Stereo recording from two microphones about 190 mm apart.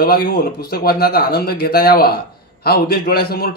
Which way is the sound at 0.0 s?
50° left (ahead or behind).